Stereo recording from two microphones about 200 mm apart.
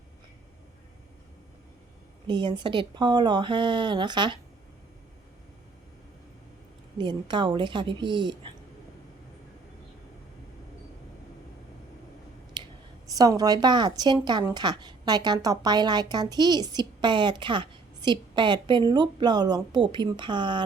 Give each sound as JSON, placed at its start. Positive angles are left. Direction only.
{"t": 2.2, "sound": "a woman's voice", "side_deg": -25}
{"t": 7.0, "sound": "a woman's voice", "side_deg": -25}
{"t": 12.6, "sound": "a sound", "side_deg": -25}
{"t": 13.1, "sound": "a woman's voice", "side_deg": -20}